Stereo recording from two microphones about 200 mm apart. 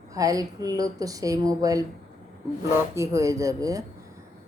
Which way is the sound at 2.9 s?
15° right (ahead or behind).